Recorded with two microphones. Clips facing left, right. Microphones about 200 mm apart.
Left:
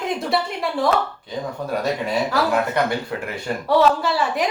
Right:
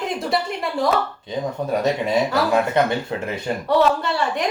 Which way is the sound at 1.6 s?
20° right (ahead or behind).